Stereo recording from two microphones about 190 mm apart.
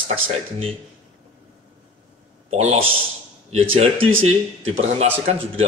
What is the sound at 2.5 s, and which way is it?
Speech, 35° right (ahead or behind).